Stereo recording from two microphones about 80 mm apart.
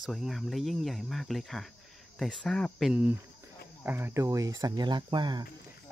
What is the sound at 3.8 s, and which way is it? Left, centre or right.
Speech, right.